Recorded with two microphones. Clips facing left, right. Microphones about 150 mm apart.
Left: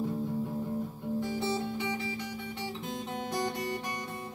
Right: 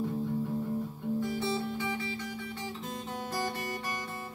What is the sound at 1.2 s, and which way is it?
Guitar, 20° left (ahead or behind).